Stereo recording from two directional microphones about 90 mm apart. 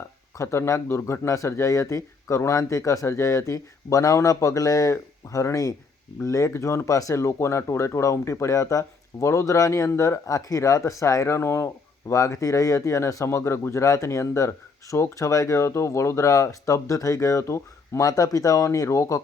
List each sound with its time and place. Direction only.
0.3 s speech: 30° left (ahead or behind)